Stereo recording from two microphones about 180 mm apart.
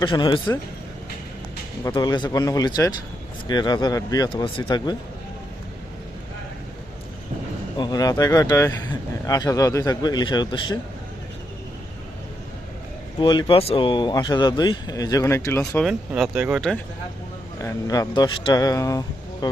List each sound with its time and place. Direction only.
0.0 s speech: 25° left (ahead or behind)
1.8 s speech: 25° left (ahead or behind)
7.8 s speech: 20° left (ahead or behind)
13.1 s speech: 25° left (ahead or behind)
15.8 s speech: centre (ahead or behind)
17.6 s speech: 20° left (ahead or behind)